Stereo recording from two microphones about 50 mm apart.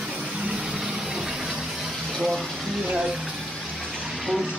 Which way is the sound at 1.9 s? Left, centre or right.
Centre.